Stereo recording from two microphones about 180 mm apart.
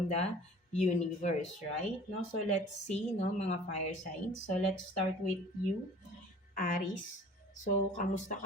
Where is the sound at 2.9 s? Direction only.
40° left (ahead or behind).